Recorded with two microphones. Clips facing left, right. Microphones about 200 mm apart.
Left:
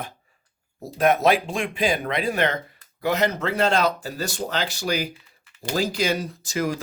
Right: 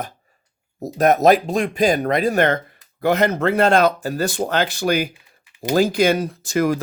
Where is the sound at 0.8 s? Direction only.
40° right (ahead or behind).